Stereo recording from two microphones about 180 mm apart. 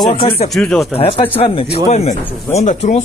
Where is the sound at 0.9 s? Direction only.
30° left (ahead or behind).